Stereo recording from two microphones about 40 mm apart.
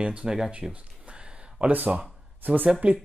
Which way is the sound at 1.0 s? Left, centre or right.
Right.